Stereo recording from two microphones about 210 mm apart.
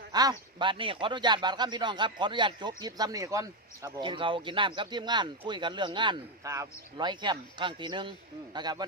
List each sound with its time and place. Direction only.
0.1 s a man's voice: 20° right (ahead or behind)